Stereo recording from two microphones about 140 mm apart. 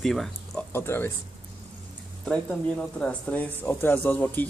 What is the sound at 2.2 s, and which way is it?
Speech, 5° left (ahead or behind).